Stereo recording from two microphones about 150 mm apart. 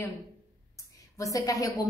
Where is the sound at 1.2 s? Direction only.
20° left (ahead or behind).